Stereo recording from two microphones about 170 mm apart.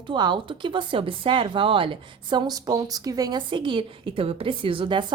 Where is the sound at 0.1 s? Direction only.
25° right (ahead or behind).